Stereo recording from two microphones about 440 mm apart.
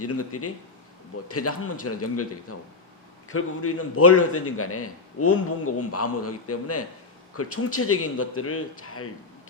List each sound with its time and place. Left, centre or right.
0.0 s a man's voice: left